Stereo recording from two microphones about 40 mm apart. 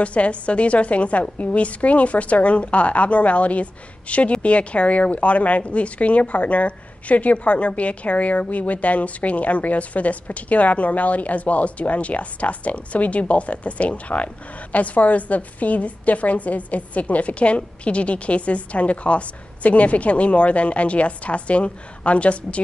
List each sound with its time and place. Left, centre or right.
0.0 s speech: left